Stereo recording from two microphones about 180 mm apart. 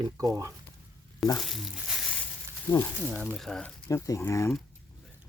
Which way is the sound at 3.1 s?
Centre (ahead or behind).